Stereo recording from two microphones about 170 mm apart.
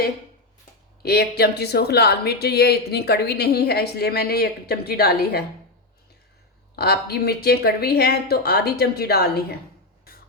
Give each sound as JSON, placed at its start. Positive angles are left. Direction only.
{"t": 1.0, "sound": "speech", "side_deg": 70}
{"t": 6.7, "sound": "speech", "side_deg": 70}